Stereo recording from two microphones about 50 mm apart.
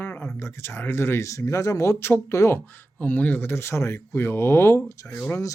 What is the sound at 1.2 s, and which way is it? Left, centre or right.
Speech, left.